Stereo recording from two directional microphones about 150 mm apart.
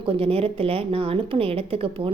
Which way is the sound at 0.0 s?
40° right (ahead or behind).